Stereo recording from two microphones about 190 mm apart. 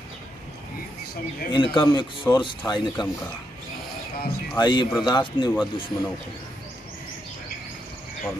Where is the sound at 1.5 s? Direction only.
25° left (ahead or behind).